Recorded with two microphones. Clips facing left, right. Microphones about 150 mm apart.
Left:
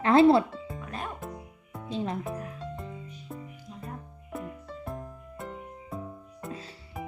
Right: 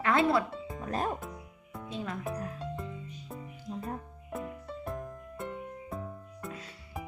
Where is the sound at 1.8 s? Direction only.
30° left (ahead or behind).